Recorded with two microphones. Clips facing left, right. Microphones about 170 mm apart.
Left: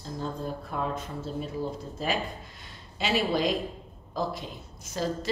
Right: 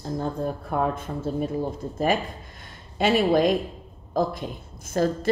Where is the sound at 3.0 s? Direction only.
50° right (ahead or behind).